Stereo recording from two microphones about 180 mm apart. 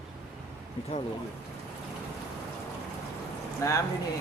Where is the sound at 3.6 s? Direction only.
20° left (ahead or behind).